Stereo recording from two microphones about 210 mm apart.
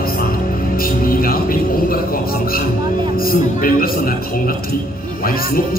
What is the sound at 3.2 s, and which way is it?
Speech, 45° left (ahead or behind).